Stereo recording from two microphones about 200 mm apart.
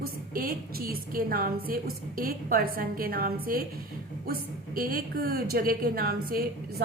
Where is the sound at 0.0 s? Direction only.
45° right (ahead or behind).